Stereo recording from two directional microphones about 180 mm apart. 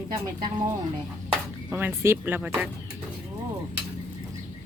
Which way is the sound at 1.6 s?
10° right (ahead or behind).